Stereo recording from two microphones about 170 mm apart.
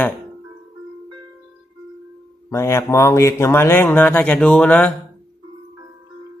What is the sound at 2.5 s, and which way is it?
Speech, 15° left (ahead or behind).